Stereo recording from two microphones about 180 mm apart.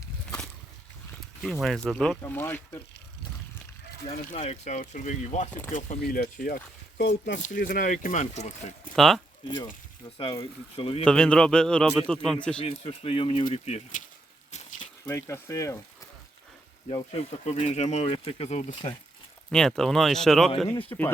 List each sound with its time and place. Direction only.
1.6 s a man's voice: centre (ahead or behind)
4.3 s speech: 40° left (ahead or behind)
6.0 s speech: 60° left (ahead or behind)
7.0 s speech: 80° left
7.4 s speech: 50° left (ahead or behind)
9.0 s a man's voice: centre (ahead or behind)
10.2 s speech: 25° left (ahead or behind)
11.0 s a man's voice: 5° left (ahead or behind)
12.5 s speech: 30° left (ahead or behind)
14.5 s a sound: 40° left (ahead or behind)
15.0 s speech: 15° left (ahead or behind)
16.9 s speech: 30° left (ahead or behind)
19.5 s a man's voice: 5° left (ahead or behind)
20.9 s speech: 20° left (ahead or behind)